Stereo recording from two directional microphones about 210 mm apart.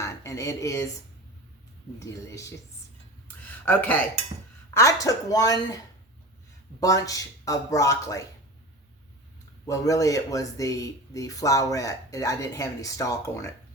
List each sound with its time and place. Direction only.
0.0 s speech: 15° left (ahead or behind)
2.0 s speech: 15° left (ahead or behind)
3.2 s a sound: 10° left (ahead or behind)
4.7 s speech: 15° left (ahead or behind)
9.6 s speech: 15° left (ahead or behind)